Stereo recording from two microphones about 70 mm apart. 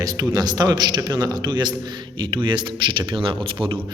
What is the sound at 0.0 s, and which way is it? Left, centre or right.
A man's voice, right.